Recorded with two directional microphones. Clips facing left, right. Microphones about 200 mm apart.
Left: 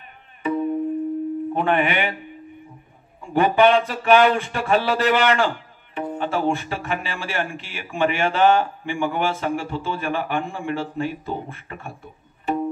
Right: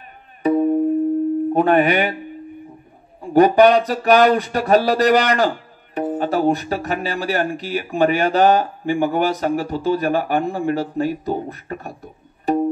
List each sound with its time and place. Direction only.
0.4 s music: 40° right (ahead or behind)
1.5 s speech: 40° right (ahead or behind)
3.2 s speech: 40° right (ahead or behind)